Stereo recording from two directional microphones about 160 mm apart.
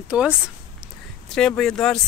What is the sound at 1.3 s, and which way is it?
Speech, 5° left (ahead or behind).